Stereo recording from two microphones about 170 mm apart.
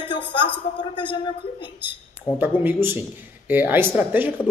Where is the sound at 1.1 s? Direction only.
30° left (ahead or behind).